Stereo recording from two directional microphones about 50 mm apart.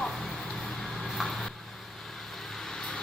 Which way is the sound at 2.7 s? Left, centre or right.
Centre.